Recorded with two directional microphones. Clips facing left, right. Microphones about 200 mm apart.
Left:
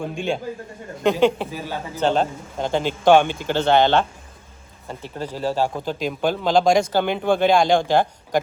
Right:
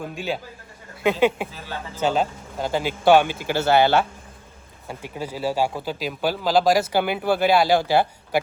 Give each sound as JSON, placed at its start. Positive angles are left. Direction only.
{"t": 0.0, "sound": "a man's voice", "side_deg": -5}